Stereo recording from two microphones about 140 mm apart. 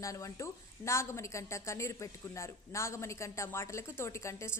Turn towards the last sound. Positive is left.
turn(degrees=20)  # may be behind; listen again after turning